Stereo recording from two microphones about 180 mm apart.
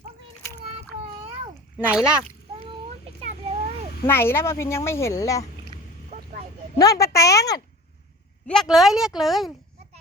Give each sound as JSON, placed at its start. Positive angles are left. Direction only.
{"t": 0.6, "sound": "a sound", "side_deg": -30}
{"t": 1.9, "sound": "a woman's voice", "side_deg": -5}
{"t": 3.2, "sound": "a sound", "side_deg": -35}
{"t": 4.0, "sound": "speech", "side_deg": 15}
{"t": 5.7, "sound": "vehicle", "side_deg": -40}
{"t": 6.7, "sound": "speech", "side_deg": 20}
{"t": 8.4, "sound": "a woman's voice", "side_deg": 0}